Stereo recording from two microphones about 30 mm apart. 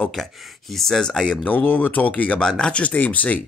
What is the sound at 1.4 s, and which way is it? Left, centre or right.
Speech, left.